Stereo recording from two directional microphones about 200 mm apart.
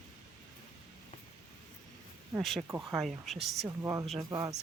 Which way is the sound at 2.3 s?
Centre (ahead or behind).